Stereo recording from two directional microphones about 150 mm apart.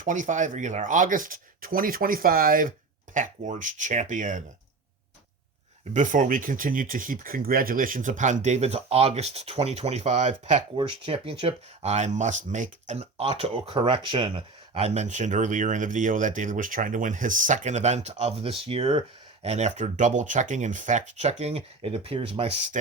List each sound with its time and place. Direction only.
0.0 s speech: 60° right (ahead or behind)
3.2 s speech: 55° right (ahead or behind)
5.9 s speech: 60° right (ahead or behind)
10.8 s speech: 35° right (ahead or behind)